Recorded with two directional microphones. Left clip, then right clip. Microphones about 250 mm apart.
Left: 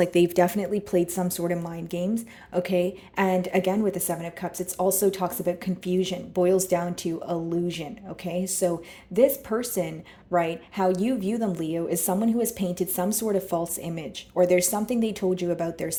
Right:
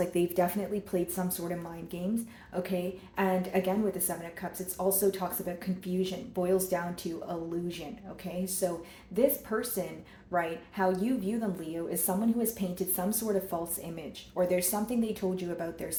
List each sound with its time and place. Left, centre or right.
0.0 s a woman's voice: left